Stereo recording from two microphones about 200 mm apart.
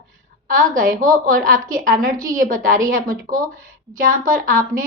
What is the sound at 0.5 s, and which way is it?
A woman's voice, 45° right (ahead or behind).